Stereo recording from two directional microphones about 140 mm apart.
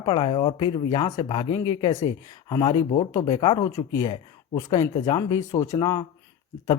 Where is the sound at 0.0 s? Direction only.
40° left (ahead or behind).